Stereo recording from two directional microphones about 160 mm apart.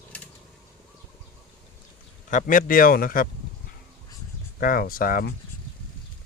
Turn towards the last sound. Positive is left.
turn(degrees=60)  # may be behind; listen again after turning